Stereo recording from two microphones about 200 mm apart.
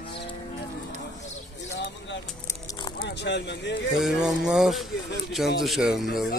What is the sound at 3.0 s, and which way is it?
Speech, 60° left (ahead or behind).